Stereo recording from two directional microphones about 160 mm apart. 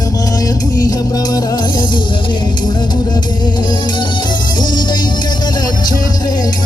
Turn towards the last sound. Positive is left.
turn(degrees=25)  # may be behind; listen again after turning